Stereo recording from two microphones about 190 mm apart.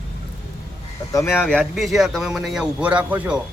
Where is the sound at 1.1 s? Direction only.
10° left (ahead or behind); by 3.4 s 5° right (ahead or behind).